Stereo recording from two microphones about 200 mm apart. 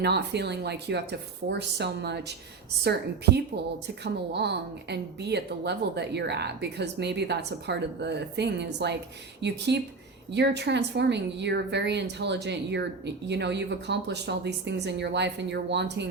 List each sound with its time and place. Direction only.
0.0 s a woman's voice: 55° right (ahead or behind)
3.8 s a woman's voice: 55° right (ahead or behind)